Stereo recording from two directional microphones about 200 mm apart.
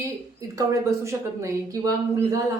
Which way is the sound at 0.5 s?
15° right (ahead or behind).